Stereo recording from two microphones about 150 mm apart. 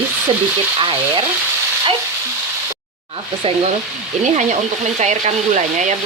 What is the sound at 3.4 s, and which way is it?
Frying, 40° right (ahead or behind).